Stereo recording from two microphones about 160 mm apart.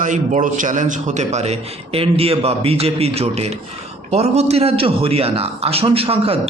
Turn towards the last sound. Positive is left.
turn(degrees=-35)  # may be behind; listen again after turning